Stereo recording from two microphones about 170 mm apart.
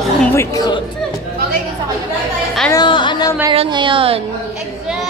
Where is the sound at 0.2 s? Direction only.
15° left (ahead or behind).